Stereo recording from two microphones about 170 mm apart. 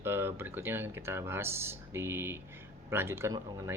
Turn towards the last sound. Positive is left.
turn(degrees=-15)  # may be behind; listen again after turning